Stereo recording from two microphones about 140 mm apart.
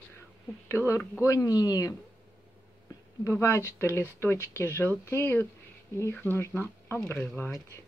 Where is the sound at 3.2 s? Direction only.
20° left (ahead or behind).